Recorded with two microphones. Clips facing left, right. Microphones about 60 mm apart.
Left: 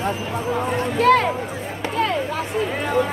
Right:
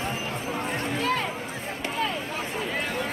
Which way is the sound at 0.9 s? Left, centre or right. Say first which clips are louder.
Left 13 dB; left.